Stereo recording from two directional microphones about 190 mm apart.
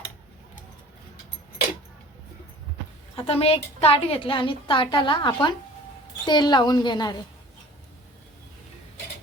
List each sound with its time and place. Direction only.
3.2 s a woman's voice: 30° left (ahead or behind)